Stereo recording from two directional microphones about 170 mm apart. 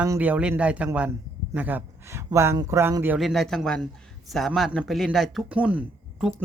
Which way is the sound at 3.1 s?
Centre (ahead or behind).